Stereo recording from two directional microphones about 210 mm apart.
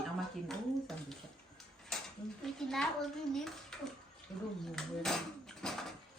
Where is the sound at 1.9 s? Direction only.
Centre (ahead or behind).